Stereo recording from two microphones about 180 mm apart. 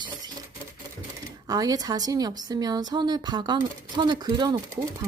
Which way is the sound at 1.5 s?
20° right (ahead or behind).